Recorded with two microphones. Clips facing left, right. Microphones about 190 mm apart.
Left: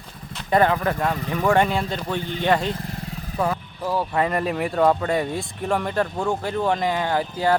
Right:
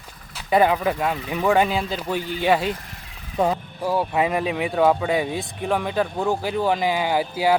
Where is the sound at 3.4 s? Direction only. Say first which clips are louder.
Right 3 dB; 25° right (ahead or behind).